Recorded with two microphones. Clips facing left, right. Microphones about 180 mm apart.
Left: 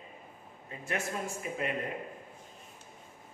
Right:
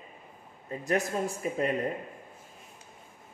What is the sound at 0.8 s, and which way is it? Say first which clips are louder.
Speech: right 7 dB; 40° right (ahead or behind).